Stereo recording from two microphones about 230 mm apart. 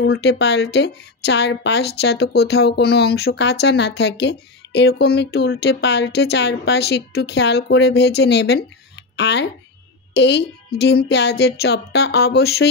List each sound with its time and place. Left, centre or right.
0.0 s a woman's voice: left